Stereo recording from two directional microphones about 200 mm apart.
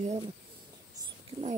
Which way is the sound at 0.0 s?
35° right (ahead or behind).